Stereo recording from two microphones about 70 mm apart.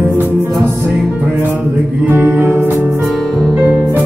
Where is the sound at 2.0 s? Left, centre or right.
Right.